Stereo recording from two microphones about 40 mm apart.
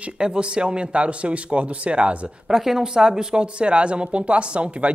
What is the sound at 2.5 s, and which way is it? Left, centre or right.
Speech, centre.